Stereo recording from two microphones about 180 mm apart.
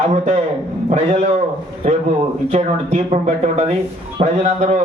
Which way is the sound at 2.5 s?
35° right (ahead or behind).